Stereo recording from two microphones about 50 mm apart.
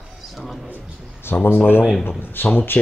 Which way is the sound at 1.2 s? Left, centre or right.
Left.